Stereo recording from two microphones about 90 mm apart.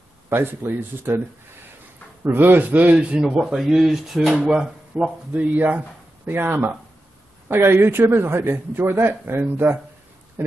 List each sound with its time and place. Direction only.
0.3 s a man's voice: 25° right (ahead or behind)
2.2 s a man's voice: 20° right (ahead or behind)